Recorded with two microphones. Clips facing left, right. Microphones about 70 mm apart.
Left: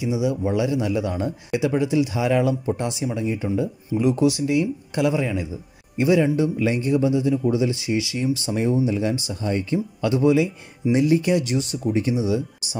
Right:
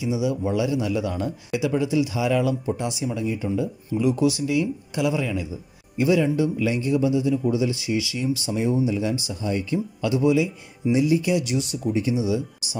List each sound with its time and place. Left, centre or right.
0.0 s a man's voice: left